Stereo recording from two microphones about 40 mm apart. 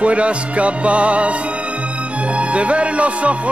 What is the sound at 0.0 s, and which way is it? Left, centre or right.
Music, right.